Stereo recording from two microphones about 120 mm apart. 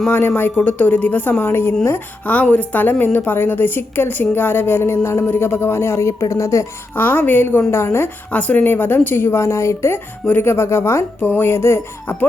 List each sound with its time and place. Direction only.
0.1 s a woman's voice: 15° left (ahead or behind)